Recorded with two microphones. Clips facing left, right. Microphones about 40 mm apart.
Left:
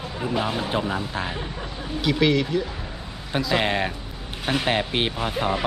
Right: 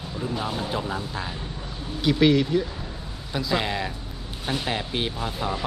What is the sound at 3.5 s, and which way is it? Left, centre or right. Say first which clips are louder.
Speech: left 3 dB; left.